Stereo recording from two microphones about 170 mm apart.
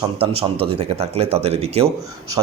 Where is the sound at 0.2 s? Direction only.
35° right (ahead or behind).